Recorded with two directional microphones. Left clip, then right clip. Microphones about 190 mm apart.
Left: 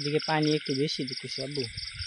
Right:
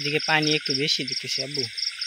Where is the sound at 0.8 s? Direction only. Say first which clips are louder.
Right 6 dB; 10° left (ahead or behind).